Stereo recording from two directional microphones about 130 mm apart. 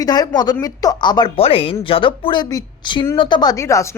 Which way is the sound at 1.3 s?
45° left (ahead or behind).